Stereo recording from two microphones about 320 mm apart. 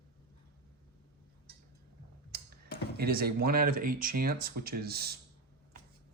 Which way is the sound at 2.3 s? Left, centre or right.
Right.